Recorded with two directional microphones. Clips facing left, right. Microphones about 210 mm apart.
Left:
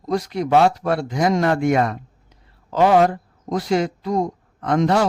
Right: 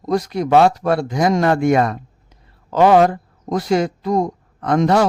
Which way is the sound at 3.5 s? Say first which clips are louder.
Right 2 dB; 45° right (ahead or behind).